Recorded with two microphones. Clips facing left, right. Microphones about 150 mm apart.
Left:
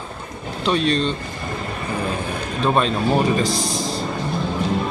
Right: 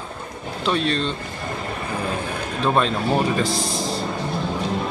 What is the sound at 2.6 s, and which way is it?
Speech, 5° left (ahead or behind).